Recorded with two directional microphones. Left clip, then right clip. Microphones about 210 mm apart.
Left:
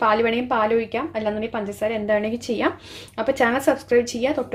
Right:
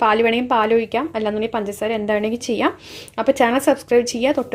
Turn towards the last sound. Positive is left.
turn(degrees=-30)  # may be behind; listen again after turning